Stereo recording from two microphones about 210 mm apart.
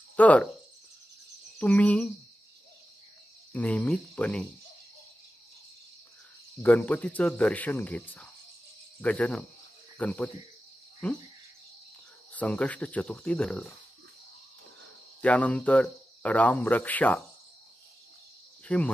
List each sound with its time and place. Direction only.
0.1 s speech: 5° left (ahead or behind)
1.6 s speech: 5° left (ahead or behind)
3.5 s speech: 5° left (ahead or behind)
6.6 s speech: 5° left (ahead or behind)
12.3 s speech: 5° left (ahead or behind)
15.2 s speech: 5° left (ahead or behind)
18.7 s speech: 5° left (ahead or behind)